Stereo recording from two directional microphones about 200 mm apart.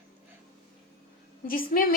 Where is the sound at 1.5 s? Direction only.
45° left (ahead or behind).